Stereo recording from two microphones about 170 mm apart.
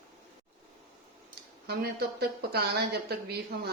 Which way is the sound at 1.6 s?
70° right (ahead or behind).